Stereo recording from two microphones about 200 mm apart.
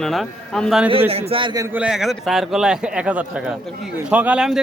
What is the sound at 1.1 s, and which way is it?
A man's voice, 30° right (ahead or behind).